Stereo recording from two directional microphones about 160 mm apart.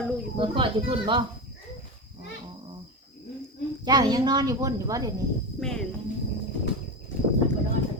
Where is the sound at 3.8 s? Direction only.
25° right (ahead or behind).